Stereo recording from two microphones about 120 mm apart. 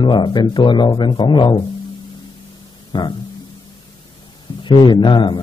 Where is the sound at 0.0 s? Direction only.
40° left (ahead or behind).